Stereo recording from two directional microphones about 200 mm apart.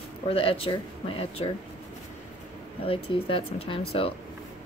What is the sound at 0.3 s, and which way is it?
Speech, 30° left (ahead or behind).